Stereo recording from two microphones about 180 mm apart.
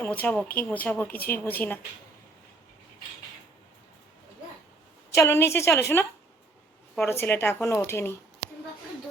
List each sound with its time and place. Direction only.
0.0 s speech: 10° left (ahead or behind)
5.1 s speech: 15° left (ahead or behind)
6.9 s speech: 15° left (ahead or behind)